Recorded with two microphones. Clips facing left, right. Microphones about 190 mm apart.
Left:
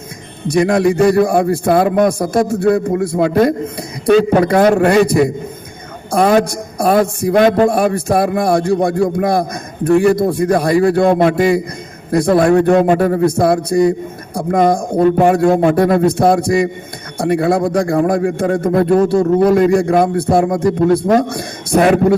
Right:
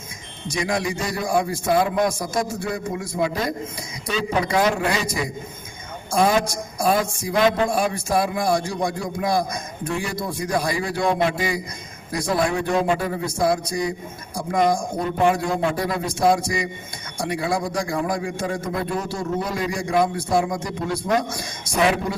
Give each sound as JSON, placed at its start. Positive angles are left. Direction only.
{"t": 0.4, "sound": "a man's voice", "side_deg": 60}